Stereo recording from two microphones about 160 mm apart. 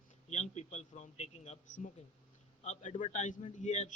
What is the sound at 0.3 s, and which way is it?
A man's voice, 45° left (ahead or behind).